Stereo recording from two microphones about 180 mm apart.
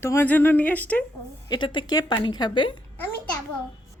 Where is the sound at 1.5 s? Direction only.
25° left (ahead or behind).